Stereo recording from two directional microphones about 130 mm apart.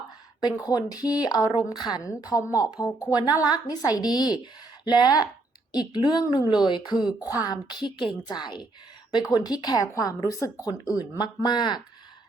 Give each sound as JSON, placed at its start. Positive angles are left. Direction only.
{"t": 0.4, "sound": "a woman's voice", "side_deg": 30}